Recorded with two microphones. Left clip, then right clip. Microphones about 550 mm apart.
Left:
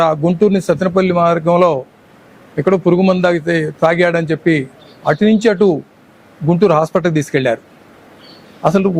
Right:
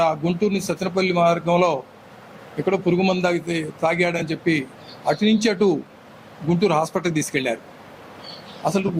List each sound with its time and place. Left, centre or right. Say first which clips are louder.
0.0 s a man's voice: left 8 dB; left